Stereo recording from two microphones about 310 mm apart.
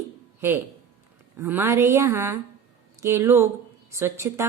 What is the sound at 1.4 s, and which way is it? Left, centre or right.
Speech, centre.